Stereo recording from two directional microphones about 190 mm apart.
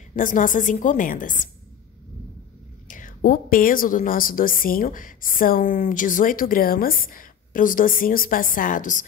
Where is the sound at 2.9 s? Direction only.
45° left (ahead or behind).